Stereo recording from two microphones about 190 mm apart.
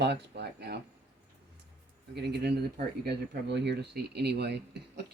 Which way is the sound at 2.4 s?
60° right (ahead or behind).